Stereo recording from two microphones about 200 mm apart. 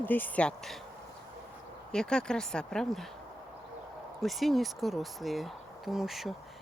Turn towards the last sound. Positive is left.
turn(degrees=0)  # may be behind; listen again after turning